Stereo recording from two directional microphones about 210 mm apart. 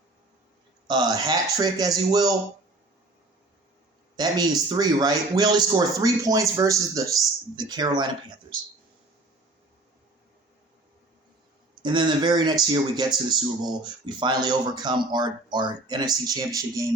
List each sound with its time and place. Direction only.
0.9 s speech: 20° right (ahead or behind)
4.2 s speech: 20° right (ahead or behind)
11.8 s speech: 20° right (ahead or behind)